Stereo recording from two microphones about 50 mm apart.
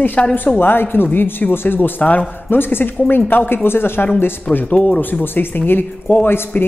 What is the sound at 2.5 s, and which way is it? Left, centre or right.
Speech, left.